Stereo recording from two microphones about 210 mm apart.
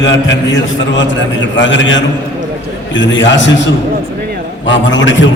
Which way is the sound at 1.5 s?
60° left (ahead or behind).